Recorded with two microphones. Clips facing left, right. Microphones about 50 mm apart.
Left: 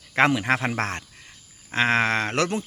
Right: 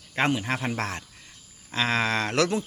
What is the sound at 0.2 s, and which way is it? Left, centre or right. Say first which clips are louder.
Speech: left 5 dB; left.